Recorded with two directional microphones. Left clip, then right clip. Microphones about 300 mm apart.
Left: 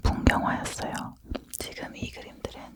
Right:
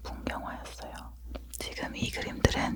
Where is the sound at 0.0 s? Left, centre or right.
Left.